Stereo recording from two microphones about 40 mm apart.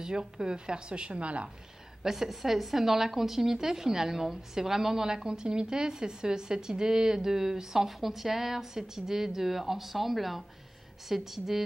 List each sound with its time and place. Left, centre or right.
0.0 s speech: centre
2.0 s speech: centre